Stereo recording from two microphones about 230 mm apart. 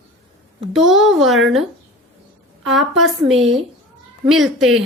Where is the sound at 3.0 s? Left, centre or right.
Centre.